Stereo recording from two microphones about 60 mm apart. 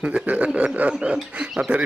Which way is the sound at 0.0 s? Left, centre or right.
Centre.